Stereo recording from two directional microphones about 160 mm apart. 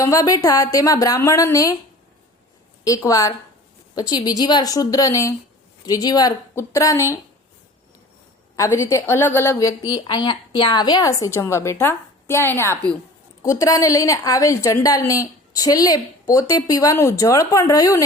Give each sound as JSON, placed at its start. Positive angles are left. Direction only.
{"t": 0.0, "sound": "a woman's voice", "side_deg": 20}
{"t": 2.8, "sound": "a woman's voice", "side_deg": 20}
{"t": 8.5, "sound": "a woman's voice", "side_deg": 20}